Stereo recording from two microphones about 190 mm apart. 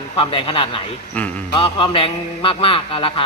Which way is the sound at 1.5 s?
30° left (ahead or behind).